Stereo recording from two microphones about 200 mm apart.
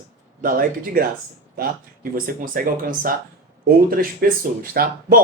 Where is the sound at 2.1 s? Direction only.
45° right (ahead or behind).